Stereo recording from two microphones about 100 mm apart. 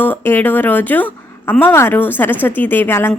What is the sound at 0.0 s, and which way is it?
A woman's voice, 20° left (ahead or behind).